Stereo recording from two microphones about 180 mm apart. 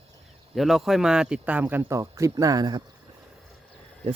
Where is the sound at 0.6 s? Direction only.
Centre (ahead or behind); by 2.8 s 20° right (ahead or behind).